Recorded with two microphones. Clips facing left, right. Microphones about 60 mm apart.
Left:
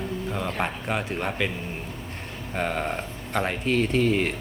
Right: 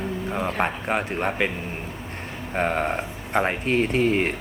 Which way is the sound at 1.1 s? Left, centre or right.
Right.